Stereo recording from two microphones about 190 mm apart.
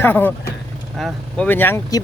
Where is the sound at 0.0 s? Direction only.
10° left (ahead or behind).